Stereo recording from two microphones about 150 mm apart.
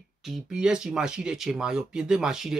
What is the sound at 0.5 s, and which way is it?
Speech, 5° right (ahead or behind).